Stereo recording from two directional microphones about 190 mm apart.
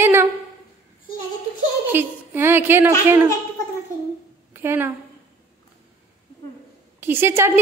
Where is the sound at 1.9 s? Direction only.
10° right (ahead or behind).